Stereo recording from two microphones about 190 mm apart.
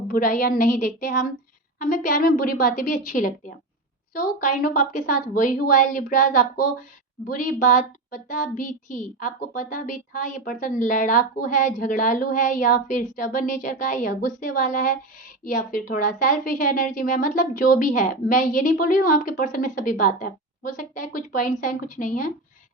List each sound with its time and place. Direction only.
0.1 s a woman's voice: 45° left (ahead or behind)